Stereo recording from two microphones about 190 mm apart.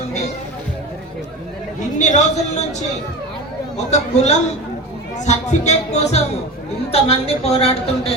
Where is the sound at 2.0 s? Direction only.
40° left (ahead or behind).